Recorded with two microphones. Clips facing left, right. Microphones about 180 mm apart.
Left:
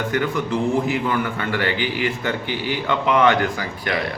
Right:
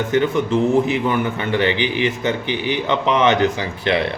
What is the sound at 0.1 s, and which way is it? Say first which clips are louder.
A man's voice: right 7 dB; 25° right (ahead or behind).